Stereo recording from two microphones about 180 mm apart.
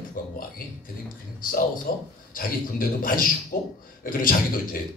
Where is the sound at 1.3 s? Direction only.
50° left (ahead or behind).